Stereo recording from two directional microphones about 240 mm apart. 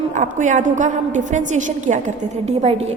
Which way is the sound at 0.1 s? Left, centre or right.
Right.